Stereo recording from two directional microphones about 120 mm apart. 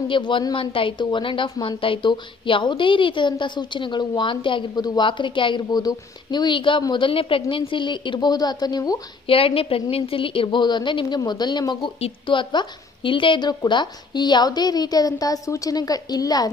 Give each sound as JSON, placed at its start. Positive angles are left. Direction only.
{"t": 0.1, "sound": "a woman's voice", "side_deg": 40}
{"t": 9.3, "sound": "a woman's voice", "side_deg": 50}